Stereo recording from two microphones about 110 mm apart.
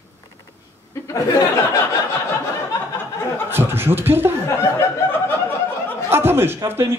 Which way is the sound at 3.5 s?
20° right (ahead or behind).